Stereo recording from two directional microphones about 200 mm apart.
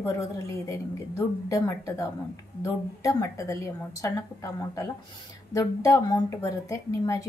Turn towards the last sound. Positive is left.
turn(degrees=15)  # may be behind; listen again after turning